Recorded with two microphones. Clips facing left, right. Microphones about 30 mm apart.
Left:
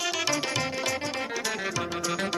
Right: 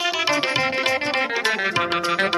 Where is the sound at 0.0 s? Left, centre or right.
Right.